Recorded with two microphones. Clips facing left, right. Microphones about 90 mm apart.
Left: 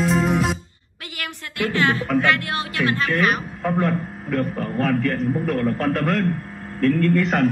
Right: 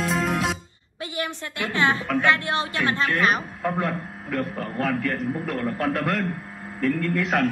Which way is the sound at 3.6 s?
Centre (ahead or behind).